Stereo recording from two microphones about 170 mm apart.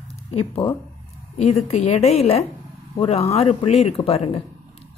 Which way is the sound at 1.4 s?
40° left (ahead or behind).